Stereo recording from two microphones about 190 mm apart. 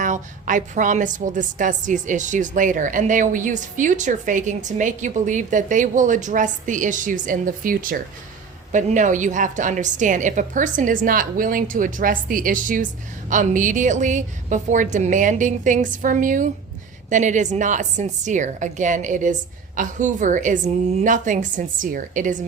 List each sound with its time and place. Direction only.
0.0 s a woman's voice: 40° right (ahead or behind)